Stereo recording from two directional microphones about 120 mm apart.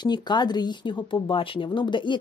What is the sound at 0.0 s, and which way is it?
Speech, 35° left (ahead or behind).